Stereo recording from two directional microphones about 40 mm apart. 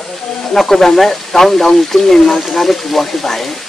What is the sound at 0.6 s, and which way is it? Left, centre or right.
Speech, centre.